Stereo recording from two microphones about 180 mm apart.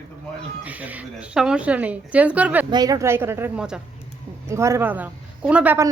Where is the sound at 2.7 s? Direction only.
20° right (ahead or behind); by 3.8 s 5° right (ahead or behind).